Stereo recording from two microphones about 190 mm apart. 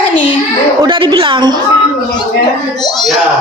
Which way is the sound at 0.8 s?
25° right (ahead or behind).